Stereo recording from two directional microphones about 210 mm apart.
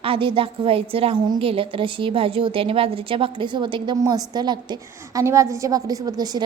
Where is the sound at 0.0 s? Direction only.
25° right (ahead or behind).